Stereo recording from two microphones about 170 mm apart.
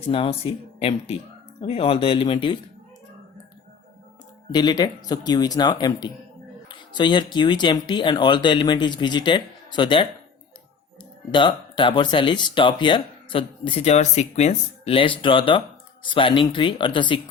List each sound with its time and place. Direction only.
0.1 s speech: 35° left (ahead or behind)
4.5 s speech: 25° left (ahead or behind)
11.3 s speech: 30° left (ahead or behind)